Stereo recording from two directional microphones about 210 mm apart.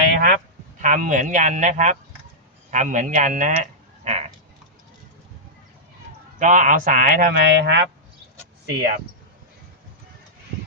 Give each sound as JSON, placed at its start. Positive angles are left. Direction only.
{"t": 0.1, "sound": "a sound", "side_deg": -40}
{"t": 0.8, "sound": "a man's voice", "side_deg": -40}
{"t": 6.4, "sound": "speech", "side_deg": -35}